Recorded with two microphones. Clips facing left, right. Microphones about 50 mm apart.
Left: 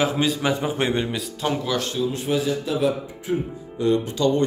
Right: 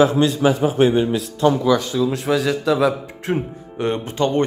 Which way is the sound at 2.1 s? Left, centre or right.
Right.